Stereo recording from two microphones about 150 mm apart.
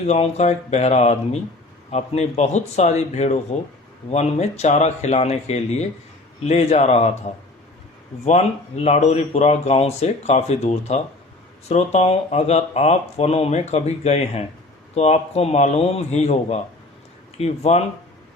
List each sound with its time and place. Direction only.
0.1 s speech: 45° left (ahead or behind)